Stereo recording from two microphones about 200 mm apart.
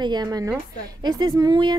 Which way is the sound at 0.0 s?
20° right (ahead or behind).